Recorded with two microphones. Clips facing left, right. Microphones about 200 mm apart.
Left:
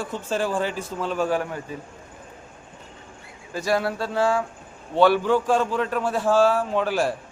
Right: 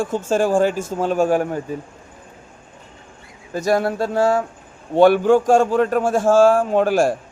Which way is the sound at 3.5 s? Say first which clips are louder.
Right 5 dB; 45° right (ahead or behind).